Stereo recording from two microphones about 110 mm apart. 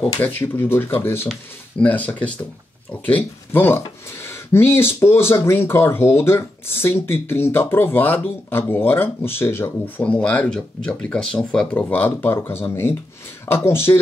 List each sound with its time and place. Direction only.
0.2 s speech: 20° left (ahead or behind)